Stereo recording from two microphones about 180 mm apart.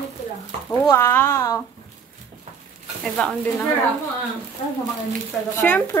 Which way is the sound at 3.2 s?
5° left (ahead or behind).